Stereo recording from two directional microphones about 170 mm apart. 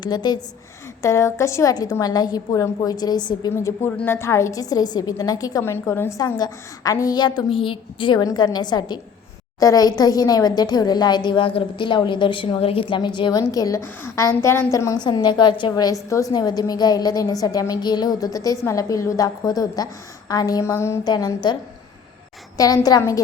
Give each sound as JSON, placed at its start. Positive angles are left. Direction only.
{"t": 0.0, "sound": "speech", "side_deg": 25}
{"t": 3.5, "sound": "speech", "side_deg": 15}